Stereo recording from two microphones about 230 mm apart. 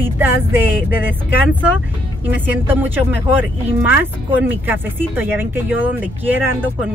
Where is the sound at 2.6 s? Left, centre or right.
Centre.